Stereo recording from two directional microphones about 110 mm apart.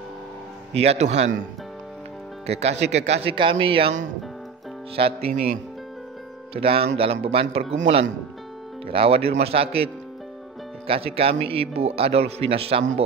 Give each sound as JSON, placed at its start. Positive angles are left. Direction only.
{"t": 0.7, "sound": "speech", "side_deg": -75}
{"t": 2.4, "sound": "speech", "side_deg": -75}
{"t": 3.3, "sound": "a man's voice", "side_deg": -50}
{"t": 4.9, "sound": "speech", "side_deg": -60}
{"t": 6.5, "sound": "speech", "side_deg": -60}
{"t": 7.7, "sound": "speech", "side_deg": -90}
{"t": 8.8, "sound": "speech", "side_deg": -60}
{"t": 10.9, "sound": "speech", "side_deg": -60}